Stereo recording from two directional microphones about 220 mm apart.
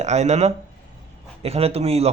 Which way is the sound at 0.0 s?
30° right (ahead or behind).